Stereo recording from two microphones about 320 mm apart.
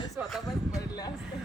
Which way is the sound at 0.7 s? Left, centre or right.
Centre.